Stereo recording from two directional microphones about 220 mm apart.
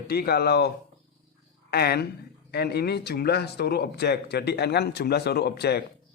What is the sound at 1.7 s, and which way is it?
Speech, 45° left (ahead or behind).